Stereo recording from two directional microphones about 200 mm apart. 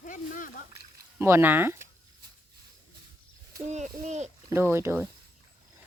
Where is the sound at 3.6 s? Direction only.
35° right (ahead or behind).